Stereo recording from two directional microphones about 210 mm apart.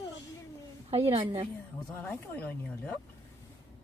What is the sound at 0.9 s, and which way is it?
Speech, 30° right (ahead or behind).